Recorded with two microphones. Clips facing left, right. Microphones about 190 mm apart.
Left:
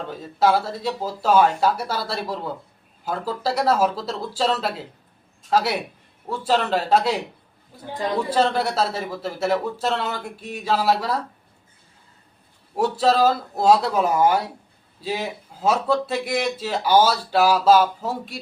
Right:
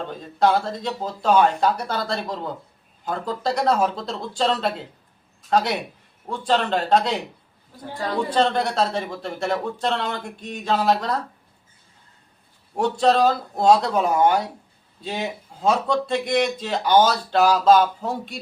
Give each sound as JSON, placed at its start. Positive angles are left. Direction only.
{"t": 0.1, "sound": "speech", "side_deg": 5}
{"t": 7.9, "sound": "a woman's voice", "side_deg": 20}
{"t": 8.3, "sound": "speech", "side_deg": 5}
{"t": 12.7, "sound": "speech", "side_deg": 5}